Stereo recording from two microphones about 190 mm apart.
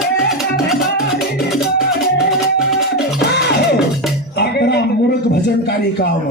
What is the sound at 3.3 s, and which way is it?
Music, 60° left (ahead or behind).